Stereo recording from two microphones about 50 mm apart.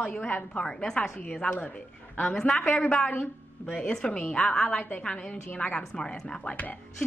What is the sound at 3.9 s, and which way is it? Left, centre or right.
Speech, left.